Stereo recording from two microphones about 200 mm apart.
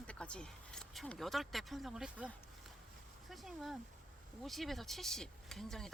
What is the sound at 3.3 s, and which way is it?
Speech, centre (ahead or behind).